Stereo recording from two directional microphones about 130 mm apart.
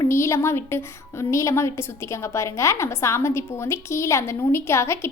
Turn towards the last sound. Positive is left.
turn(degrees=20)  # may be behind; listen again after turning